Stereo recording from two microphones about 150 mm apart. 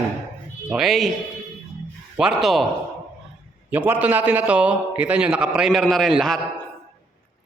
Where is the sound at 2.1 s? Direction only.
5° right (ahead or behind).